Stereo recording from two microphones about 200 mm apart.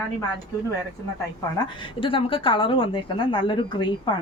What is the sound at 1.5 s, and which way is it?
Speech, 25° left (ahead or behind).